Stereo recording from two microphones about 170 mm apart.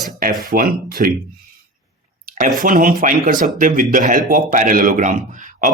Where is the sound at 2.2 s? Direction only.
50° right (ahead or behind).